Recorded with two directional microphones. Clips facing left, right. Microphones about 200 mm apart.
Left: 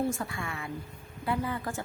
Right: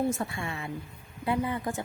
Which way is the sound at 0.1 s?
25° right (ahead or behind).